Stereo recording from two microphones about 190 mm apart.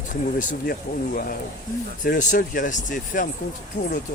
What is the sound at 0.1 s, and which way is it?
Speech, 45° left (ahead or behind).